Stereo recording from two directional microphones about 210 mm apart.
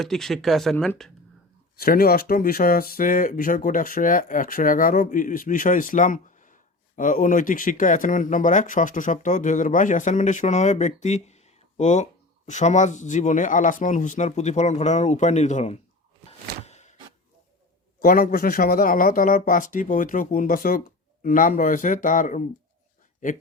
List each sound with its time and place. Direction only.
0.0 s speech: centre (ahead or behind)
1.8 s speech: 45° left (ahead or behind)
16.6 s a sound: 30° left (ahead or behind)
18.0 s speech: 40° left (ahead or behind)